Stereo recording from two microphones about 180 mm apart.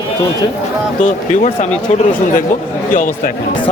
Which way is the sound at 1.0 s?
45° left (ahead or behind).